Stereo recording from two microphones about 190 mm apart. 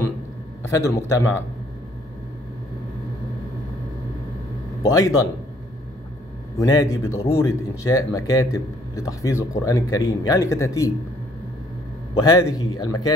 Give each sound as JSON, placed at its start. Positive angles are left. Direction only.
{"t": 0.7, "sound": "speech", "side_deg": 15}
{"t": 4.9, "sound": "speech", "side_deg": 20}
{"t": 6.6, "sound": "speech", "side_deg": 20}
{"t": 12.3, "sound": "speech", "side_deg": 20}